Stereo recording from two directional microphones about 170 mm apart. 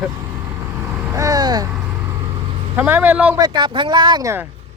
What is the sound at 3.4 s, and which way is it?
Speech, 25° right (ahead or behind).